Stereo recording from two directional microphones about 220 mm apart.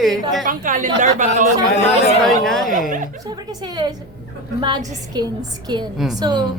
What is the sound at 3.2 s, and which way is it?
A woman's voice, 20° right (ahead or behind).